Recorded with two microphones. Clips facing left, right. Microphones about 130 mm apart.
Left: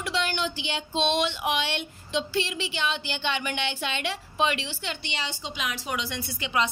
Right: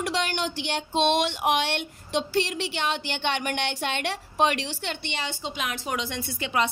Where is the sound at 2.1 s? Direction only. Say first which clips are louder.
Right 2 dB; 60° right (ahead or behind).